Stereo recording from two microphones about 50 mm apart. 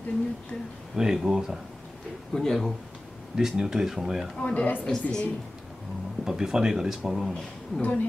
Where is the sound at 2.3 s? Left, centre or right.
Centre.